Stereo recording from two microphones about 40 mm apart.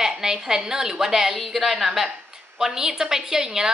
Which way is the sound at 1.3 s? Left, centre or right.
Centre.